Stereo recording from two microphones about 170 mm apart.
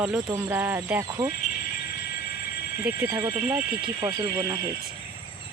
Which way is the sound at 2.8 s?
15° right (ahead or behind).